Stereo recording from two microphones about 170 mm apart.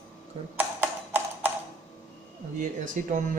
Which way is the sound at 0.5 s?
10° right (ahead or behind).